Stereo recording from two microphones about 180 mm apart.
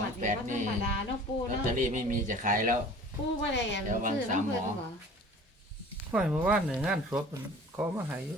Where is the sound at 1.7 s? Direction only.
45° right (ahead or behind).